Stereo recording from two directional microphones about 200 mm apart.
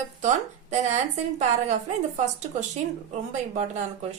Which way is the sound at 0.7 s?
35° right (ahead or behind).